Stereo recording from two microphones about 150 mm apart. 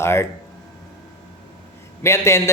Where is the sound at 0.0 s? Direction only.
15° left (ahead or behind).